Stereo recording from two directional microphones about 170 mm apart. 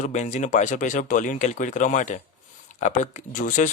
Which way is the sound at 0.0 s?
45° left (ahead or behind).